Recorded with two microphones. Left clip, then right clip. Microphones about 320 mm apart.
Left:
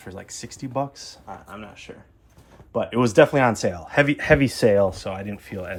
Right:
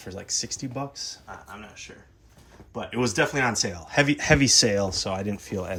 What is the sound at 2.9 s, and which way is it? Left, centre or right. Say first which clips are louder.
Speech: left 8 dB; centre.